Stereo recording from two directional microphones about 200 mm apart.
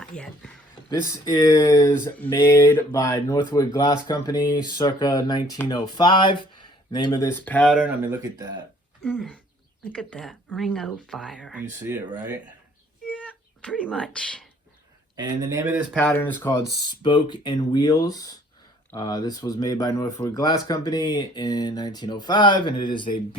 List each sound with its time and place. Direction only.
0.1 s speech: 5° left (ahead or behind)
0.9 s speech: 20° left (ahead or behind)
9.0 s speech: centre (ahead or behind)
11.8 s speech: 10° right (ahead or behind)
13.8 s speech: 5° left (ahead or behind)
15.1 s speech: 20° right (ahead or behind)
16.0 s speech: 10° left (ahead or behind)
16.4 s speech: 20° left (ahead or behind)